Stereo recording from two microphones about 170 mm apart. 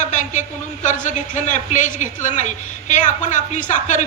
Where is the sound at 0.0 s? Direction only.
45° left (ahead or behind).